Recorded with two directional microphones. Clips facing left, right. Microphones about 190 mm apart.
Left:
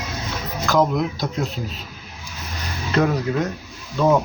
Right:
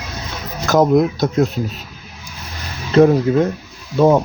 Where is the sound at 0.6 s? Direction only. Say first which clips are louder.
Right 6 dB; 45° right (ahead or behind).